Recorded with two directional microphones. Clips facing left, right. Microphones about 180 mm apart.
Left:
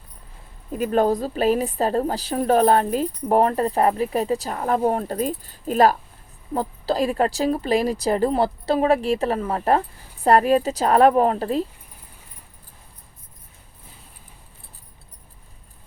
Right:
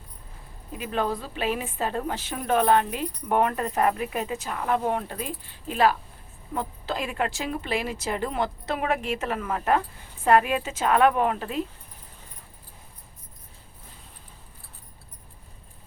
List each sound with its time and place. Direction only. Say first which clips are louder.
0.7 s a woman's voice: left 8 dB; 45° left (ahead or behind)